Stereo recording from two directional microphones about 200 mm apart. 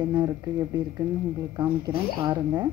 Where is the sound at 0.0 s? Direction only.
20° right (ahead or behind).